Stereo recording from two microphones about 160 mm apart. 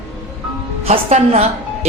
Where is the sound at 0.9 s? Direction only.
40° right (ahead or behind).